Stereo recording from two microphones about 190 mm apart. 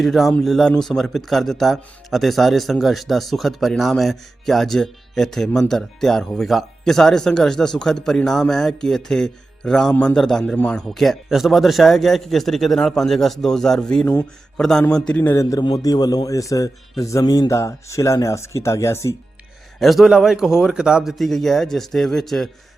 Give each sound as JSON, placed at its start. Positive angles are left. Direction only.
{"t": 0.0, "sound": "a man's voice", "side_deg": 0}
{"t": 19.8, "sound": "speech", "side_deg": 0}